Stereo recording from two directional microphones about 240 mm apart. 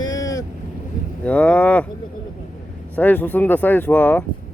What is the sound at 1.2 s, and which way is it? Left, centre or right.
Speech, centre.